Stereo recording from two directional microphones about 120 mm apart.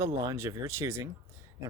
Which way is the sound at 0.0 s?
25° right (ahead or behind).